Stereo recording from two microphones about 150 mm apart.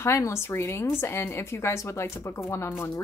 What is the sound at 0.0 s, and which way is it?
Speech, 20° left (ahead or behind).